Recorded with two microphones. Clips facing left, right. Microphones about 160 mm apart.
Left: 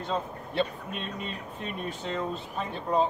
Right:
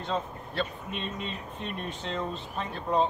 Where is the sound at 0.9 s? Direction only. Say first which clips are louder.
Right 1 dB; 5° left (ahead or behind).